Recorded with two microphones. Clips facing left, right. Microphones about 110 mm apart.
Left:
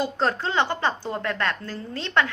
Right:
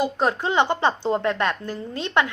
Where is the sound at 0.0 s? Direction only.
15° right (ahead or behind).